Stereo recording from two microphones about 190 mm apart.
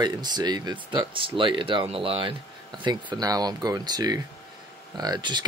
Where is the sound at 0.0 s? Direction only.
20° right (ahead or behind).